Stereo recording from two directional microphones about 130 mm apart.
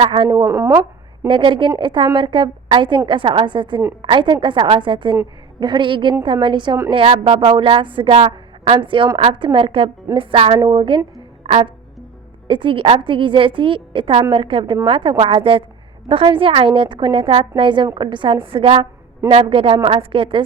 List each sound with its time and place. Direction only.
0.0 s a woman's voice: 40° right (ahead or behind)
0.3 s a woman's voice: 25° right (ahead or behind)
1.3 s a woman's voice: 40° right (ahead or behind)
10.6 s a woman's voice: 35° right (ahead or behind)